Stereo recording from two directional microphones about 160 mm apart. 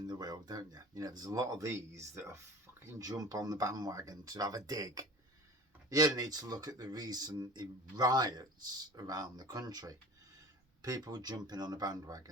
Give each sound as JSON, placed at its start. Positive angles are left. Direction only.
{"t": 0.1, "sound": "speech", "side_deg": -25}